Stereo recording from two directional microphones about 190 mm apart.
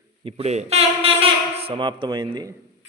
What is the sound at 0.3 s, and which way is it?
Speech, 35° right (ahead or behind).